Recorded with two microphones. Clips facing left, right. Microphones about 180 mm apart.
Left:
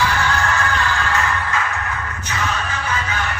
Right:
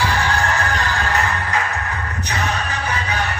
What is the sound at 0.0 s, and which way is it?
Music, 35° right (ahead or behind).